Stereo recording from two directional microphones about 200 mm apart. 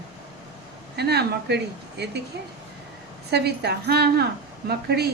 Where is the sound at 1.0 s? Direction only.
55° right (ahead or behind).